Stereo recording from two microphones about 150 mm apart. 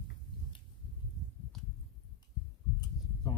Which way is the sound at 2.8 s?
25° left (ahead or behind).